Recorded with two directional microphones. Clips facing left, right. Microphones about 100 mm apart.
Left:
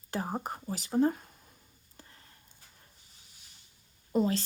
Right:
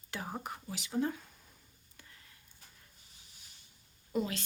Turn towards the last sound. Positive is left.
turn(degrees=35)  # may be behind; listen again after turning